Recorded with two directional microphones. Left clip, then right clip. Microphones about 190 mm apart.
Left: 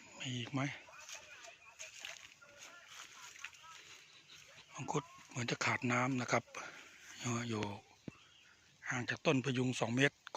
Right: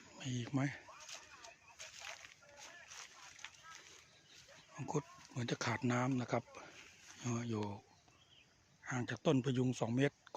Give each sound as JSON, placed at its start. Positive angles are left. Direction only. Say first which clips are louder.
{"t": 0.2, "sound": "speech", "louder": "left 1 dB", "side_deg": -15}
{"t": 4.7, "sound": "speech", "louder": "left 2 dB", "side_deg": -5}
{"t": 8.8, "sound": "speech", "louder": "left 3 dB", "side_deg": -15}